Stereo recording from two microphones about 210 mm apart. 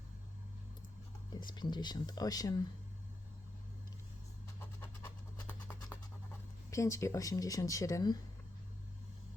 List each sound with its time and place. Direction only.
1.3 s speech: 20° left (ahead or behind)
4.8 s scratch: 10° left (ahead or behind)
6.7 s speech: 15° left (ahead or behind)